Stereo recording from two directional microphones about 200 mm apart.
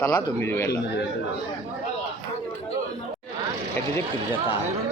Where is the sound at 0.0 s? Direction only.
15° left (ahead or behind).